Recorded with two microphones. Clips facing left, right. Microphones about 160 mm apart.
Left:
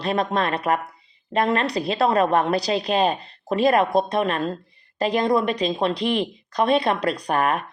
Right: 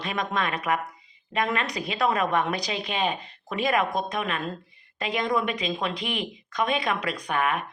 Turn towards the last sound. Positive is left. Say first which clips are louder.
# left 5 dB
turn(degrees=40)  # may be behind; listen again after turning